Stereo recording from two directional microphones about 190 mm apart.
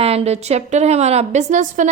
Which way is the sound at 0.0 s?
30° right (ahead or behind).